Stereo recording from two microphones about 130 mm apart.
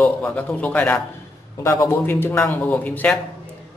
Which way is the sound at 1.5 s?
20° left (ahead or behind).